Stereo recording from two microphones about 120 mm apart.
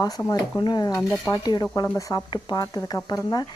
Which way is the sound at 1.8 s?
25° left (ahead or behind).